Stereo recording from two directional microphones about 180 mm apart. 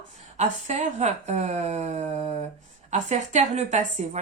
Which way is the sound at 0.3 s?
40° right (ahead or behind).